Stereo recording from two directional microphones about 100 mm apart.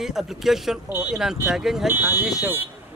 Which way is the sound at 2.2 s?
Centre (ahead or behind).